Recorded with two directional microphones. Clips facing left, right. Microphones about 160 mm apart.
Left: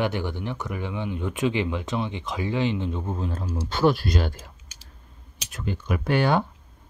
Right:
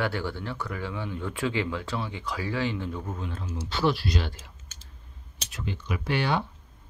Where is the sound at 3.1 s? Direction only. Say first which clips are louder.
Left 5 dB; 35° left (ahead or behind).